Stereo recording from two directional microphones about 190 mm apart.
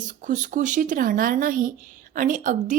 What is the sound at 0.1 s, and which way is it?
A woman's voice, 40° right (ahead or behind).